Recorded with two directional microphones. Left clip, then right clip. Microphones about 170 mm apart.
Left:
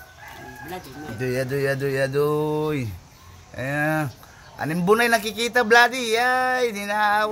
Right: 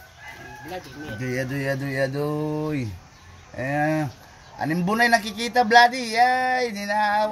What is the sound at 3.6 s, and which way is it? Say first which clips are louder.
Speech: even; 40° left (ahead or behind).